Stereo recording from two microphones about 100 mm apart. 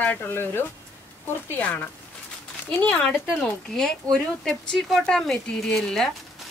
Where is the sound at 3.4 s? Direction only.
5° left (ahead or behind).